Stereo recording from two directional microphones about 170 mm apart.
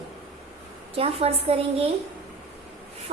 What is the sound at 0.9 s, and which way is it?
Speech, 35° right (ahead or behind).